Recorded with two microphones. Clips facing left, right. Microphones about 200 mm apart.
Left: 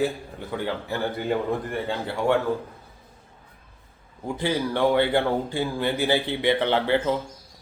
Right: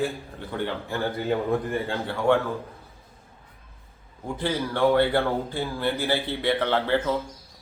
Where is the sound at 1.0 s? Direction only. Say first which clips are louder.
Right 1 dB; centre (ahead or behind).